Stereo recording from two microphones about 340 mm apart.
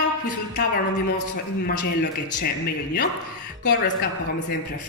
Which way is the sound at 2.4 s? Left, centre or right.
Left.